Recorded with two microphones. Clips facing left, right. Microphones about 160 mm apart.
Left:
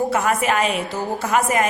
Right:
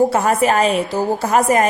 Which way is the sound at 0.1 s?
35° right (ahead or behind).